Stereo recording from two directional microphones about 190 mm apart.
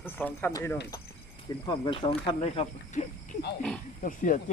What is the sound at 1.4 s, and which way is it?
Speech, 25° left (ahead or behind).